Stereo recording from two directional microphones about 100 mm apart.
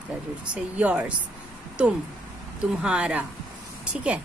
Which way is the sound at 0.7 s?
10° right (ahead or behind).